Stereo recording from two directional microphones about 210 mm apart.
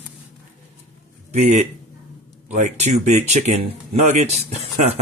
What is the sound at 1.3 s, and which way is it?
A man's voice, 35° right (ahead or behind).